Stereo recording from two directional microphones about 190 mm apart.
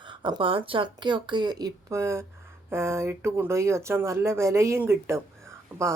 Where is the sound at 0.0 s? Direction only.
25° right (ahead or behind).